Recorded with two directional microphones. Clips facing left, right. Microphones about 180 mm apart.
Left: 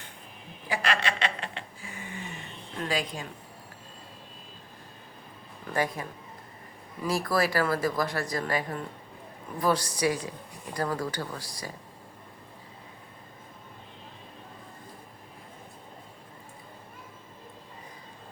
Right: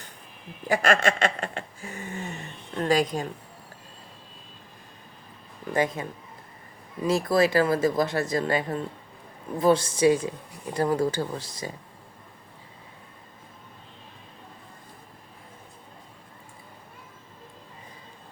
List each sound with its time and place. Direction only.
0.7 s a sound: 45° right (ahead or behind)
2.8 s speech: 45° right (ahead or behind)
5.7 s speech: 20° right (ahead or behind)